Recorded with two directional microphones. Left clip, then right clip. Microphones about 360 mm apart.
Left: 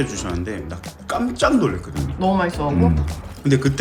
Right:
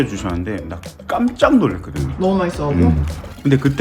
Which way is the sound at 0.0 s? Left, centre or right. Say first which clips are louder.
Right 3 dB; centre.